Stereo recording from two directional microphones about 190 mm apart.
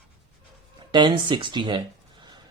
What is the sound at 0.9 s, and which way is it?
Speech, 25° right (ahead or behind).